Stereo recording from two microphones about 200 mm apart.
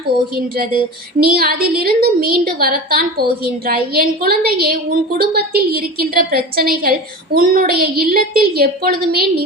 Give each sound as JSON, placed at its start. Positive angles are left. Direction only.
{"t": 0.3, "sound": "a woman's voice", "side_deg": -50}